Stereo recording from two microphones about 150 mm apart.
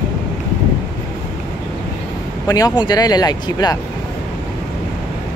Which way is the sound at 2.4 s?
25° left (ahead or behind).